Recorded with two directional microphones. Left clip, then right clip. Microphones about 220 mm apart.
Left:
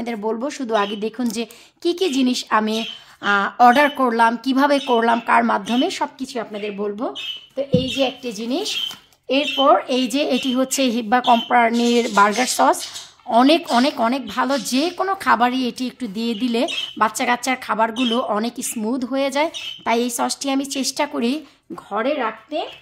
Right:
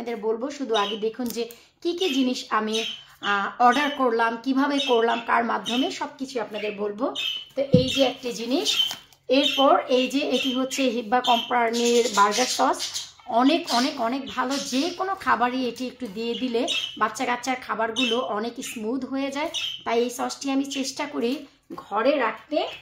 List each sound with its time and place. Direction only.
0.0 s a woman's voice: 50° left (ahead or behind)
8.0 s a woman's voice: 35° left (ahead or behind)